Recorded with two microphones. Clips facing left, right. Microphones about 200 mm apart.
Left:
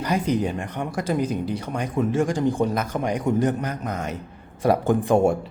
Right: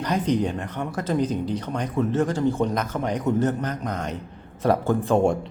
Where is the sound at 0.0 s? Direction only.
10° left (ahead or behind).